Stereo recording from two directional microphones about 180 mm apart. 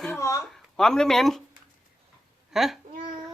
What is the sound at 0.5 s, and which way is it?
Speech, 5° left (ahead or behind).